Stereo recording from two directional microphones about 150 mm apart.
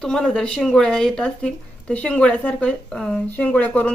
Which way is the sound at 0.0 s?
5° left (ahead or behind).